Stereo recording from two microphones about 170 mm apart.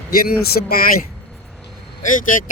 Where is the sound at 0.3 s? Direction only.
65° left (ahead or behind).